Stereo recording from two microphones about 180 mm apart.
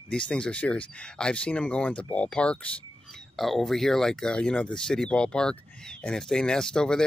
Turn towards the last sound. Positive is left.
turn(degrees=5)  # may be behind; listen again after turning